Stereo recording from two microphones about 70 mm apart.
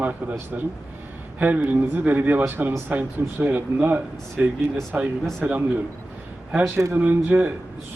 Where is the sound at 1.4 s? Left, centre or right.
Right.